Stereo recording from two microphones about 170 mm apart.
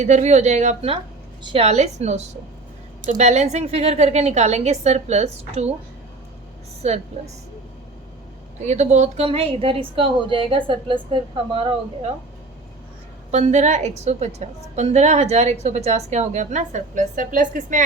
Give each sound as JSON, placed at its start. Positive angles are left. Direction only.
{"t": 0.0, "sound": "a woman's voice", "side_deg": -45}
{"t": 6.8, "sound": "a woman's voice", "side_deg": -40}
{"t": 8.6, "sound": "a woman's voice", "side_deg": -45}
{"t": 13.3, "sound": "a woman's voice", "side_deg": -40}